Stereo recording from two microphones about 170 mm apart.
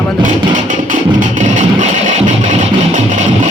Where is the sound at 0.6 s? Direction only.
50° right (ahead or behind).